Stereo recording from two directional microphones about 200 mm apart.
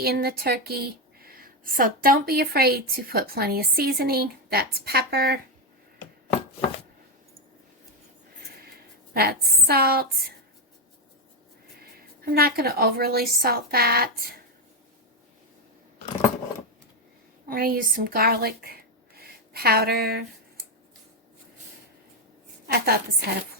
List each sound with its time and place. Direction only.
0.0 s a woman's voice: 50° right (ahead or behind)
9.1 s a woman's voice: 50° right (ahead or behind)
12.2 s a woman's voice: 50° right (ahead or behind)
17.5 s speech: 45° right (ahead or behind)
22.6 s a woman's voice: 50° right (ahead or behind)